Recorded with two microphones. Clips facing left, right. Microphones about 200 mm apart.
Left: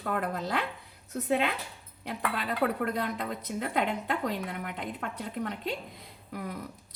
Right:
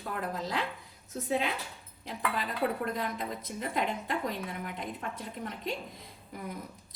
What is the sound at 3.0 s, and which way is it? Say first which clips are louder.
A woman's voice: left 2 dB; 65° left (ahead or behind).